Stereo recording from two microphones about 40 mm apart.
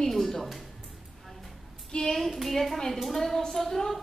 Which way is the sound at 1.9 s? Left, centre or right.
Centre.